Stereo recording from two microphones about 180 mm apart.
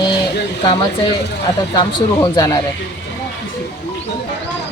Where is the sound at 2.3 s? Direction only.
20° left (ahead or behind).